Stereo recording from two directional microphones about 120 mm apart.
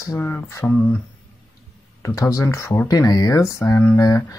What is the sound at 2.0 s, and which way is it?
Speech, 25° left (ahead or behind).